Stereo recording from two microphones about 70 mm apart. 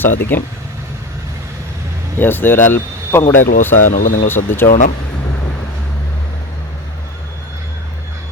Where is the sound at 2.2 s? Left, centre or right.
Left.